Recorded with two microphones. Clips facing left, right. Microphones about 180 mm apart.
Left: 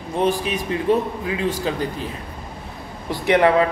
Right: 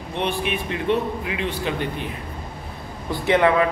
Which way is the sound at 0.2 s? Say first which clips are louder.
Left 4 dB; 40° left (ahead or behind).